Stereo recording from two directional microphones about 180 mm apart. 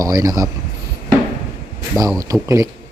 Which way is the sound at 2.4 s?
20° right (ahead or behind).